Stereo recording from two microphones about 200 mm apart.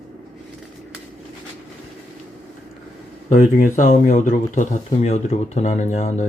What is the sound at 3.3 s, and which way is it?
Speech, 40° left (ahead or behind).